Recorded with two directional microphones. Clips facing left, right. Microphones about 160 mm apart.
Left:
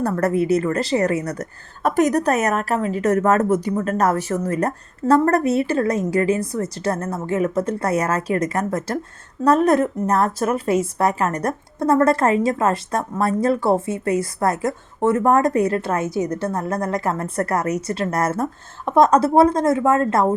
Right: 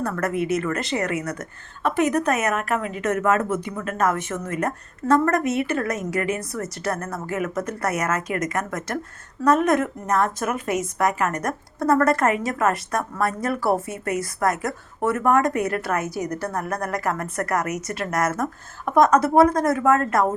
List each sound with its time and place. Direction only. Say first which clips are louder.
0.0 s a woman's voice: left 5 dB; 35° left (ahead or behind)